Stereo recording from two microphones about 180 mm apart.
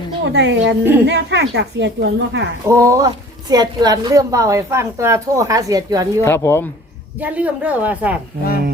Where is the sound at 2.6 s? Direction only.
15° right (ahead or behind).